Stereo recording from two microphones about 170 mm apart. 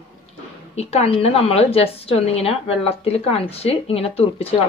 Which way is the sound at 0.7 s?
35° left (ahead or behind).